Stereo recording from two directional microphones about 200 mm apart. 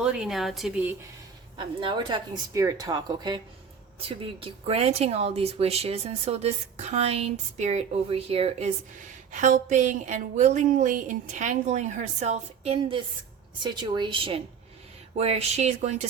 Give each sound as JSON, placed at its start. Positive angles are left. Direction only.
{"t": 0.0, "sound": "a woman's voice", "side_deg": -5}
{"t": 1.5, "sound": "speech", "side_deg": -25}